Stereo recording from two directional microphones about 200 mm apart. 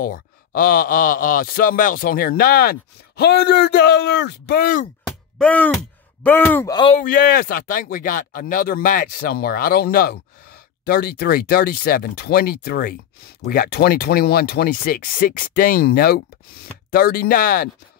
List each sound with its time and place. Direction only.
0.0 s speech: 45° left (ahead or behind)
5.0 s groan: 5° left (ahead or behind)
6.2 s speech: 10° left (ahead or behind)
6.7 s speech: 25° left (ahead or behind)
7.0 s speech: 45° left (ahead or behind)